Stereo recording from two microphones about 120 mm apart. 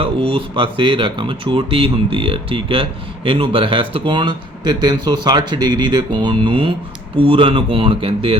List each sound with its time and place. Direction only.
0.0 s speech: 50° right (ahead or behind)